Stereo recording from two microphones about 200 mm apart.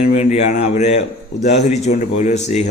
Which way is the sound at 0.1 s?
35° left (ahead or behind).